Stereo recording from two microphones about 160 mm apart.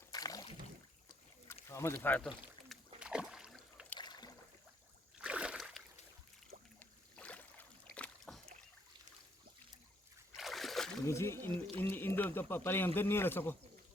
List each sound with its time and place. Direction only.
0.1 s a sound: 25° left (ahead or behind)
1.6 s speech: 15° left (ahead or behind)
3.0 s rowboat: 5° right (ahead or behind)
3.9 s water: 25° left (ahead or behind)
5.2 s a sound: 5° right (ahead or behind)
6.7 s boat: 10° left (ahead or behind)
10.3 s splash: centre (ahead or behind)
11.0 s speech: 15° left (ahead or behind)